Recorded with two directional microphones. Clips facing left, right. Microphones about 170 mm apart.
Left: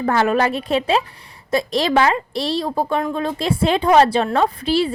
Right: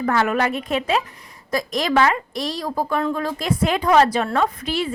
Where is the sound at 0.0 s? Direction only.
30° left (ahead or behind).